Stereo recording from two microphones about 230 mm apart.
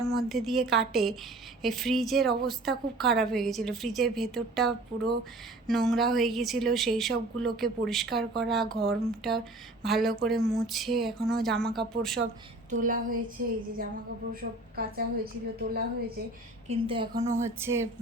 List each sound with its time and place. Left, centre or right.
0.0 s speech: centre
12.7 s a woman's voice: right
14.8 s a woman's voice: right
16.6 s a woman's voice: right